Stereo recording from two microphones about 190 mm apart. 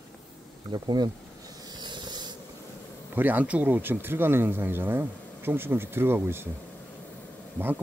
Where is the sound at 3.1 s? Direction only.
10° right (ahead or behind).